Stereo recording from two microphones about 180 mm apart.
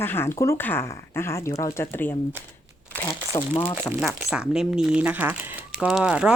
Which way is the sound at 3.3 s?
30° left (ahead or behind).